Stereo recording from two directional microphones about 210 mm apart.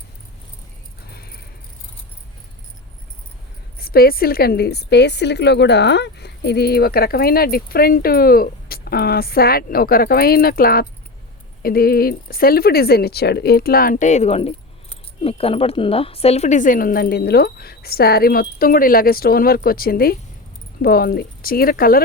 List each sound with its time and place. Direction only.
1.1 s keys jangling: 45° left (ahead or behind)
3.8 s a woman's voice: 45° left (ahead or behind)